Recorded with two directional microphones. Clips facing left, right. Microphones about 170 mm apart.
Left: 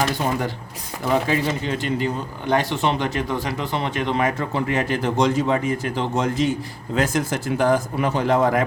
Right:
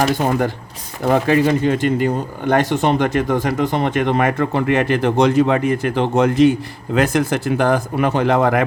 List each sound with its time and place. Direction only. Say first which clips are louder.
0.0 s speech: right 5 dB; 50° right (ahead or behind); by 8.6 s 70° right (ahead or behind)